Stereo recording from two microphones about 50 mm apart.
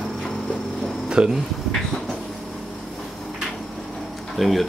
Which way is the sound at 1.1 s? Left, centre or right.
Centre.